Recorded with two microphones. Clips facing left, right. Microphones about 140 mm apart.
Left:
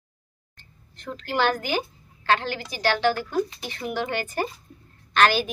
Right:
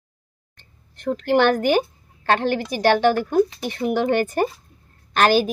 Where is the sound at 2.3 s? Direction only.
50° right (ahead or behind).